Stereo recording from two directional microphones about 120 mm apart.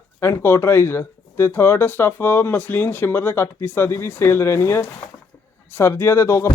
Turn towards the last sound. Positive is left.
turn(degrees=25)  # may be behind; listen again after turning